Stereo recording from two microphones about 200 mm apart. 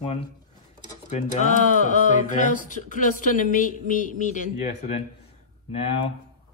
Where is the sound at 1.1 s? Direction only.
40° left (ahead or behind).